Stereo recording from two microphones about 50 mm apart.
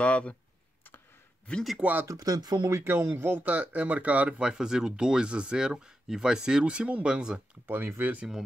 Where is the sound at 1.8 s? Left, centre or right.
Right.